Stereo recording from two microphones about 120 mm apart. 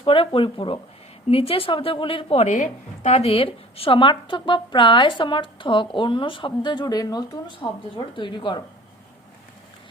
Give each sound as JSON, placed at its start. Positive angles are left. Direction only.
{"t": 0.0, "sound": "speech", "side_deg": 45}
{"t": 2.5, "sound": "speech", "side_deg": 85}